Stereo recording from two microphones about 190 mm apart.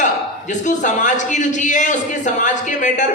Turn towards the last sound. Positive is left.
turn(degrees=40)  # may be behind; listen again after turning